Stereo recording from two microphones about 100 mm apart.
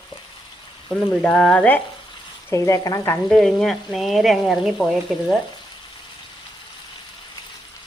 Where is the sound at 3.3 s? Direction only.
5° left (ahead or behind).